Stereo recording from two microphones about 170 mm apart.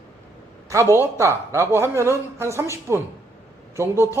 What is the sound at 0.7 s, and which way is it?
A man's voice, 15° right (ahead or behind).